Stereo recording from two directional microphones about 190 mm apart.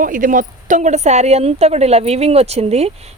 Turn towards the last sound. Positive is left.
turn(degrees=-35)  # may be behind; listen again after turning